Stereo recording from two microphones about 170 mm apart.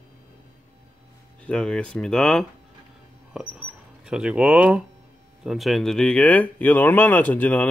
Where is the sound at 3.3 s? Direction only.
5° right (ahead or behind).